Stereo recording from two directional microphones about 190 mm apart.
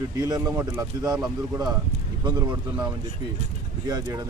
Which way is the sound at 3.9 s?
20° right (ahead or behind).